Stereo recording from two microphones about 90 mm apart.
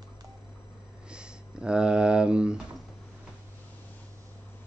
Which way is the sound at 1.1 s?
10° right (ahead or behind).